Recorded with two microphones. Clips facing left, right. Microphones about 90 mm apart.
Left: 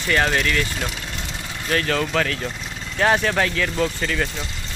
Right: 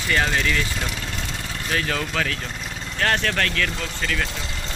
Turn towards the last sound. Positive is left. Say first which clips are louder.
# left 5 dB
turn(degrees=10)  # may be behind; listen again after turning